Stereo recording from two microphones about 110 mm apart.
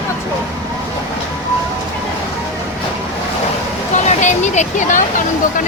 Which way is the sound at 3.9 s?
90° left.